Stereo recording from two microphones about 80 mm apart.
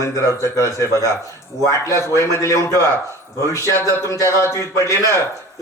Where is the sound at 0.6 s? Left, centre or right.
Left.